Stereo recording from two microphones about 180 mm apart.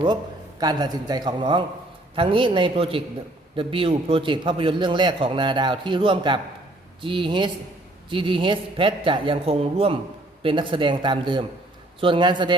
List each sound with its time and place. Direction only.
0.6 s a man's voice: 20° right (ahead or behind)